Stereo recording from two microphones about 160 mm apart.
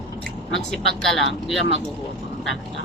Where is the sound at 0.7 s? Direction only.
Centre (ahead or behind).